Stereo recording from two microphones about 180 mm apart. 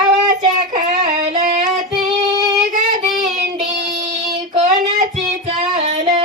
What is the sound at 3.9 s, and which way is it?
Child singing, 40° right (ahead or behind).